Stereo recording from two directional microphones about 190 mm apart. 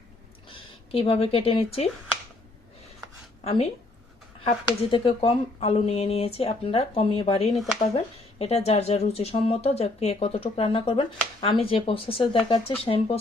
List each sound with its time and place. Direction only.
0.5 s speech: 30° left (ahead or behind)
3.4 s a woman's voice: 30° left (ahead or behind)
4.9 s speech: 30° left (ahead or behind)